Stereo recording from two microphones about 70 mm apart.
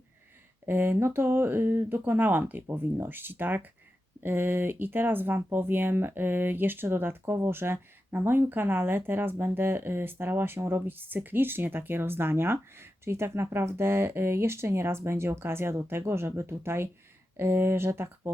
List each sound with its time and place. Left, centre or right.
0.6 s speech: right